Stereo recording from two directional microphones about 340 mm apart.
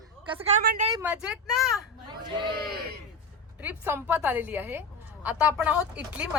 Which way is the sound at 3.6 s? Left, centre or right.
Centre.